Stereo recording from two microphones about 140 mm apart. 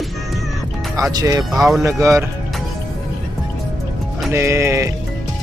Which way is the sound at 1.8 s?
20° right (ahead or behind).